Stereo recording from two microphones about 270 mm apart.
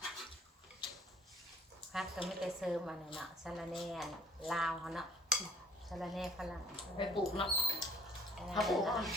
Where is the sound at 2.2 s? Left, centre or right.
Centre.